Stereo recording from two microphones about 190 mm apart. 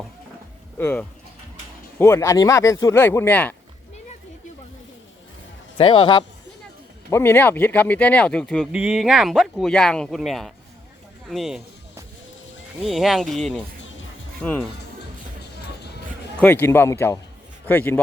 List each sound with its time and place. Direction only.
0.8 s speech: 10° left (ahead or behind)
5.7 s a man's voice: 30° left (ahead or behind)
7.1 s speech: 10° left (ahead or behind)
12.8 s speech: centre (ahead or behind)
16.4 s speech: 10° left (ahead or behind)